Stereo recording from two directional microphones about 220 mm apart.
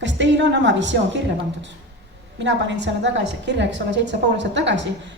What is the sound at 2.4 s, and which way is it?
A woman's voice, 55° right (ahead or behind).